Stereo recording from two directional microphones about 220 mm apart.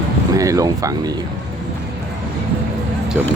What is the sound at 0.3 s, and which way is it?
Speech, 15° right (ahead or behind).